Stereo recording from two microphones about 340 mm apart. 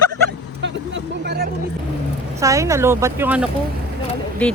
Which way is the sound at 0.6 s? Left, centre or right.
Right.